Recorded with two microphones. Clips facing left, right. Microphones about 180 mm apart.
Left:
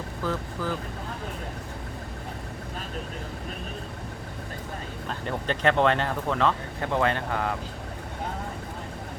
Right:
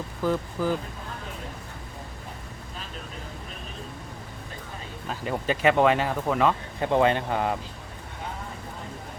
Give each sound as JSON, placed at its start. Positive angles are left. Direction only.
{"t": 0.2, "sound": "speech", "side_deg": -15}
{"t": 5.0, "sound": "speech", "side_deg": -5}